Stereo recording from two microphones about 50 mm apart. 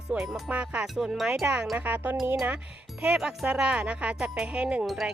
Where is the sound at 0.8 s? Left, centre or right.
Centre.